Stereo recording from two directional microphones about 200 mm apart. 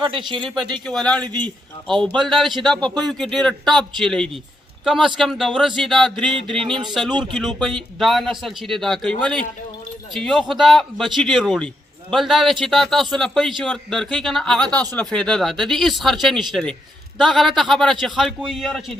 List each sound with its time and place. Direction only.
0.0 s speech: 25° right (ahead or behind)
0.9 s a man's voice: 5° left (ahead or behind)
1.2 s speech: 20° right (ahead or behind)
2.2 s a man's voice: centre (ahead or behind)